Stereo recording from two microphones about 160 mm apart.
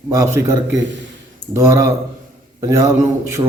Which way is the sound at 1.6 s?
20° right (ahead or behind).